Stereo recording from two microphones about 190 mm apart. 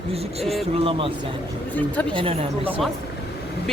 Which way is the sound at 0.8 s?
30° right (ahead or behind).